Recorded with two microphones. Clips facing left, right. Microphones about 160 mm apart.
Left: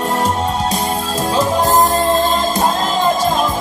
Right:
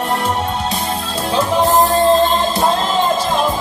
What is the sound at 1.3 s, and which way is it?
Music, 40° left (ahead or behind).